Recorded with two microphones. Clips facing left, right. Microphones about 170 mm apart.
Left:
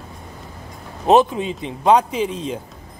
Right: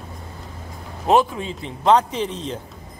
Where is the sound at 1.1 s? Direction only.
20° left (ahead or behind).